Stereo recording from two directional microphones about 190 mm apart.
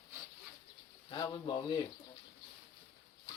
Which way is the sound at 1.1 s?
25° left (ahead or behind).